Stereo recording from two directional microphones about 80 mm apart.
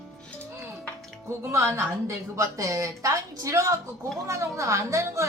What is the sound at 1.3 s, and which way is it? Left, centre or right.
A woman's voice, right.